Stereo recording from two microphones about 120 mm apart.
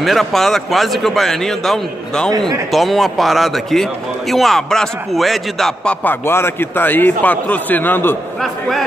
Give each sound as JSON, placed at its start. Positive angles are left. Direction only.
{"t": 0.0, "sound": "a man's voice", "side_deg": 0}
{"t": 6.0, "sound": "a man's voice", "side_deg": 20}
{"t": 8.4, "sound": "a man's voice", "side_deg": 0}